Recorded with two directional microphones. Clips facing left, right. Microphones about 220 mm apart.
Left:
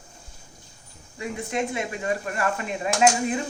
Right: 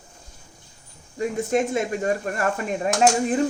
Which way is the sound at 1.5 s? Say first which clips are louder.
Right 5 dB; 40° right (ahead or behind).